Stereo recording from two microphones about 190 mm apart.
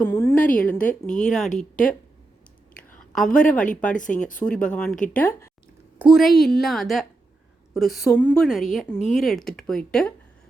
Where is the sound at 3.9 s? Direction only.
45° left (ahead or behind).